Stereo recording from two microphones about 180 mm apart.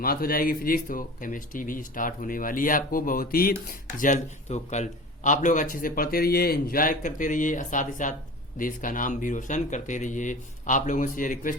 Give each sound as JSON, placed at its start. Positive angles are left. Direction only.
{"t": 0.0, "sound": "speech", "side_deg": 55}